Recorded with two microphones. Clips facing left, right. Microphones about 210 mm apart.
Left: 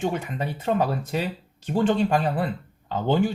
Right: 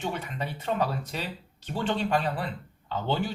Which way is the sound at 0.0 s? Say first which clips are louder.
Left 6 dB; 45° left (ahead or behind).